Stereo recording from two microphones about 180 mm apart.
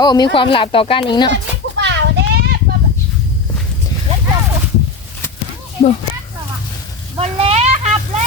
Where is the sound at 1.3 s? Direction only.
80° right.